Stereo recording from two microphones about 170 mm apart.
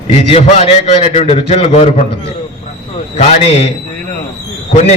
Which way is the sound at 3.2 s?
40° left (ahead or behind).